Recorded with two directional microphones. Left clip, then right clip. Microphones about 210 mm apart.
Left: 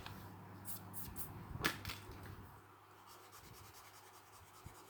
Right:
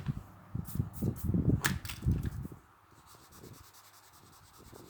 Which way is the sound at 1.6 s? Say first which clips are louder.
Right 5 dB; 40° right (ahead or behind).